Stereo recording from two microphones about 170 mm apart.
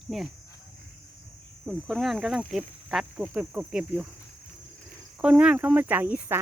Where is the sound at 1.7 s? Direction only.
Centre (ahead or behind).